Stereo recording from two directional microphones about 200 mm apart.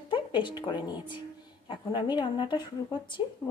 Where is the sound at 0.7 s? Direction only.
20° left (ahead or behind).